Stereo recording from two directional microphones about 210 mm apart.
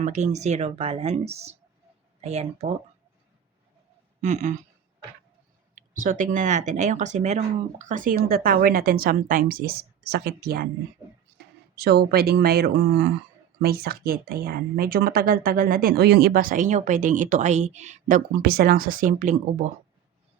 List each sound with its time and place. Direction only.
0.0 s speech: 35° right (ahead or behind)
4.2 s speech: 35° right (ahead or behind)
6.0 s speech: 40° right (ahead or behind)
11.8 s speech: 50° right (ahead or behind)